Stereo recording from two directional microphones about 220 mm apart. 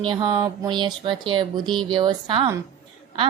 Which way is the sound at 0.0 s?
20° right (ahead or behind).